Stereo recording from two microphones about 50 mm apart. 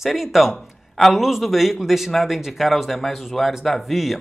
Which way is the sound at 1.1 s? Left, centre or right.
Centre.